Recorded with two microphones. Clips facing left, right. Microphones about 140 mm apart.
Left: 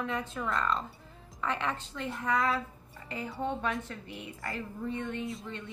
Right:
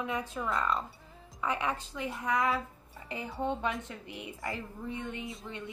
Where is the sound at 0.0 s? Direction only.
10° right (ahead or behind).